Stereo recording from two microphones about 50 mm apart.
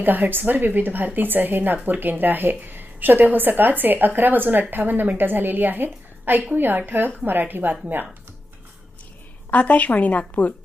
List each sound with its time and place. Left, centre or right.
0.0 s a woman's voice: right
9.5 s a woman's voice: left